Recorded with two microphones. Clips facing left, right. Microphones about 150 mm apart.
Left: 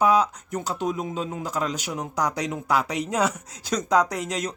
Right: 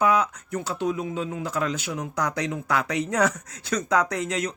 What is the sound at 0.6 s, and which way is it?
Speech, 40° left (ahead or behind).